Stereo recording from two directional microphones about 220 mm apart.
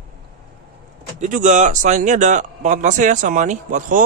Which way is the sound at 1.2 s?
35° right (ahead or behind).